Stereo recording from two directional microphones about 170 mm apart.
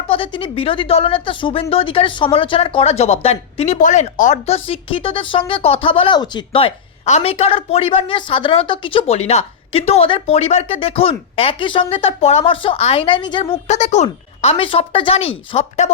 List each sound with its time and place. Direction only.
0.1 s speech: 30° left (ahead or behind)